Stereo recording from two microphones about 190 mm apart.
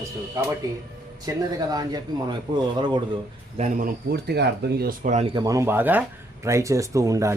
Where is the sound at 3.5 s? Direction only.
40° right (ahead or behind).